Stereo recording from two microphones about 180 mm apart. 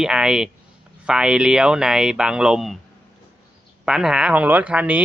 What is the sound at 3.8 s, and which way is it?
Speech, 5° right (ahead or behind).